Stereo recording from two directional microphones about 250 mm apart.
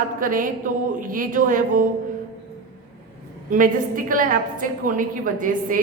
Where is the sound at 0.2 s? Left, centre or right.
Right.